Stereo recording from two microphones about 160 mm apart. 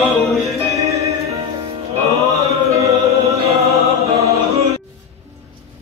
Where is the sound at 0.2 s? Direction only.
Centre (ahead or behind).